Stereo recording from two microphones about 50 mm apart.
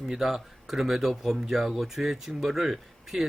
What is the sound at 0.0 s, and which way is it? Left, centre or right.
Speech, centre.